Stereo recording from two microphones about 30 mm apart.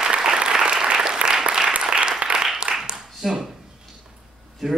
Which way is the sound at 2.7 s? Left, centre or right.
Right.